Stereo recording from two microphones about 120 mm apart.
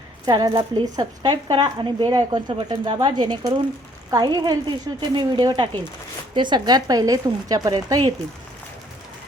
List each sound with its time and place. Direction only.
0.3 s speech: 35° right (ahead or behind)